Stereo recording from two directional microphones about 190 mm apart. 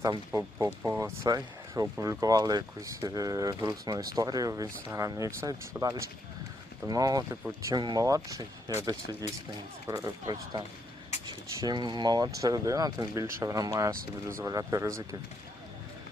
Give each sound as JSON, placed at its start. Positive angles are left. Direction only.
{"t": 0.3, "sound": "speech", "side_deg": -15}
{"t": 11.6, "sound": "speech", "side_deg": -20}